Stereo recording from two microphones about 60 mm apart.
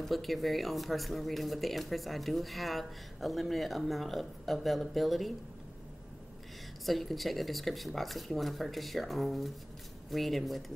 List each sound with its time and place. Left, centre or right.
0.0 s speech: centre
6.9 s speech: centre